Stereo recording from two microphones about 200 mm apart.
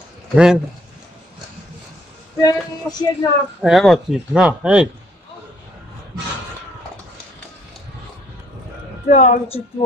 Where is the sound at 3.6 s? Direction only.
Centre (ahead or behind).